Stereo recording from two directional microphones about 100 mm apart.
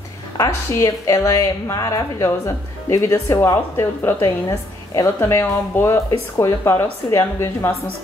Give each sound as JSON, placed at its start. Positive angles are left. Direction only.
{"t": 0.7, "sound": "a woman's voice", "side_deg": 30}